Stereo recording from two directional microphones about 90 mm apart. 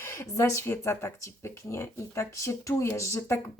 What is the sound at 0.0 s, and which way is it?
A woman's voice, 30° left (ahead or behind).